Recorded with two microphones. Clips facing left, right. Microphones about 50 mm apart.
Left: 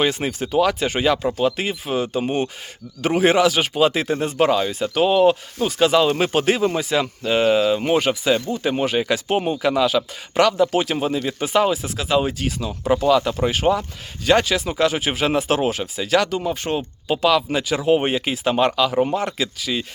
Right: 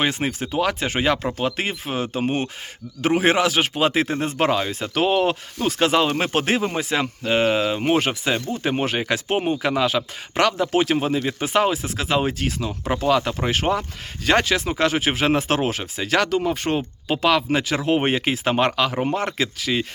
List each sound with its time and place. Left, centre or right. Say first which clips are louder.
0.0 s speech: left 2 dB; right
5.8 s speech: left 3 dB; right